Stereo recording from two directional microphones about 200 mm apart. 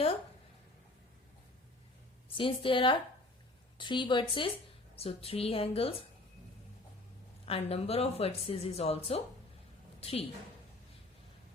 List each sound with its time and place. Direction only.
2.3 s a woman's voice: 25° left (ahead or behind)
7.4 s a woman's voice: 30° left (ahead or behind)